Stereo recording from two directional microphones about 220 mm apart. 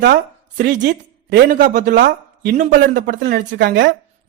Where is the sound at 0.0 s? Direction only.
40° right (ahead or behind).